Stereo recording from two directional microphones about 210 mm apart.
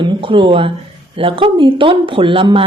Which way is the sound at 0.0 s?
25° right (ahead or behind).